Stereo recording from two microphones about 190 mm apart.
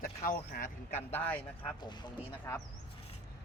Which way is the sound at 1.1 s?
10° left (ahead or behind).